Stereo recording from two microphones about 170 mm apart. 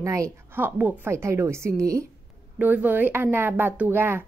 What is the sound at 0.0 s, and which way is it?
Speech, 20° right (ahead or behind).